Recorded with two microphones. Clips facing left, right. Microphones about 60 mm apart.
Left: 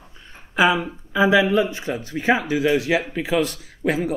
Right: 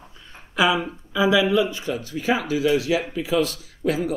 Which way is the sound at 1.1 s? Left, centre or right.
Left.